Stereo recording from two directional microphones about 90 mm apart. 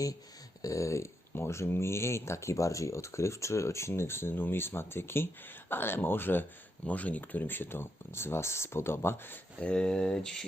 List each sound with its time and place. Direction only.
0.6 s speech: 35° left (ahead or behind)
9.6 s speech: 10° left (ahead or behind)